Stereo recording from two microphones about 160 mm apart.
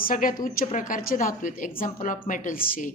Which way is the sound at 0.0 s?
60° left (ahead or behind).